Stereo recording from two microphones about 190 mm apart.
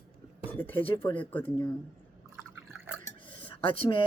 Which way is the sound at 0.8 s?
30° left (ahead or behind).